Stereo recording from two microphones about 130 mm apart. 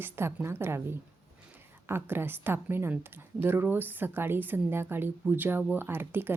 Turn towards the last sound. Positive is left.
turn(degrees=-15)  # may be behind; listen again after turning